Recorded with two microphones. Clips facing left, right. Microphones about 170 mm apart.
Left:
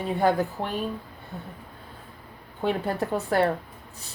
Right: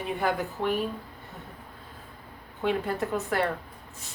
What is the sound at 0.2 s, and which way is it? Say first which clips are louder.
Speech: left 7 dB; 30° left (ahead or behind).